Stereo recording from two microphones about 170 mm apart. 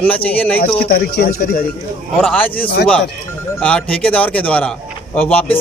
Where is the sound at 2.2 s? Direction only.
10° left (ahead or behind).